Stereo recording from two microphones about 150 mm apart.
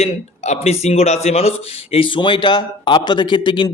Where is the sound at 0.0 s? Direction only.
45° left (ahead or behind).